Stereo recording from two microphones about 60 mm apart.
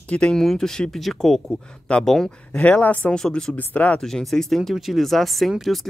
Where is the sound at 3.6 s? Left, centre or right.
Left.